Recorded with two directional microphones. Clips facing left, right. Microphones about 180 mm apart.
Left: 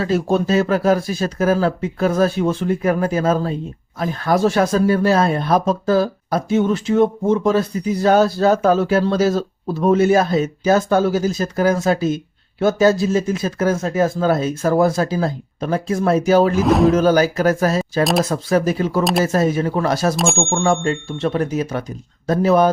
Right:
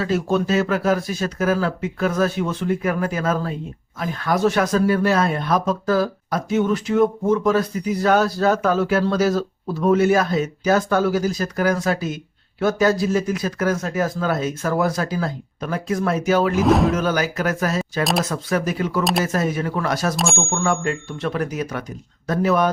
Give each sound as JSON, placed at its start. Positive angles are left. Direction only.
{"t": 0.0, "sound": "speech", "side_deg": 35}
{"t": 16.6, "sound": "speech", "side_deg": 0}
{"t": 16.9, "sound": "speech", "side_deg": 35}